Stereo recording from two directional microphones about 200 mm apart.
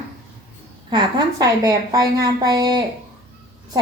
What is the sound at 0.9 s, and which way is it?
A woman's voice, 20° right (ahead or behind).